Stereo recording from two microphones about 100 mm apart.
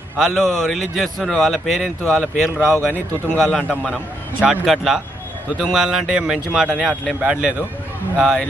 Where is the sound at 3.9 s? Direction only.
5° right (ahead or behind).